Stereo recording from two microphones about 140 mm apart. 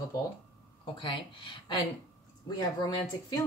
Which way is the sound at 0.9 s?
35° left (ahead or behind).